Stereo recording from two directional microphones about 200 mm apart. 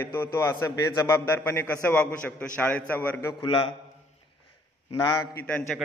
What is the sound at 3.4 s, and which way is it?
Speech, 25° left (ahead or behind).